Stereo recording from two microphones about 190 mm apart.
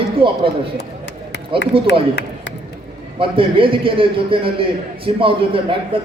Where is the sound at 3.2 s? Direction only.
25° right (ahead or behind).